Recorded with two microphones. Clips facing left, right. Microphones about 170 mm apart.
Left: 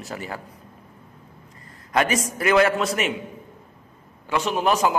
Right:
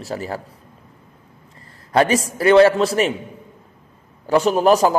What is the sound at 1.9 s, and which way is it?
Speech, 30° right (ahead or behind).